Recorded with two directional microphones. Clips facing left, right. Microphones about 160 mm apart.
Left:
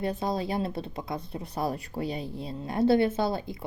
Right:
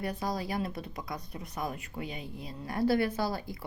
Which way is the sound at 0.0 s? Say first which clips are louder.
Left 5 dB; 25° left (ahead or behind).